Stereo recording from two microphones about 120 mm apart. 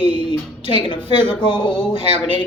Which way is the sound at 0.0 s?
45° left (ahead or behind).